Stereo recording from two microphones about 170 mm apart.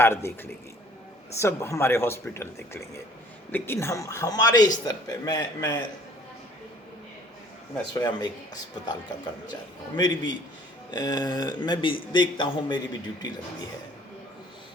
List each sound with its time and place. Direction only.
0.0 s speech: 15° left (ahead or behind)
1.4 s speech: 15° left (ahead or behind)
3.5 s a man's voice: 15° left (ahead or behind)
7.9 s a man's voice: 25° left (ahead or behind)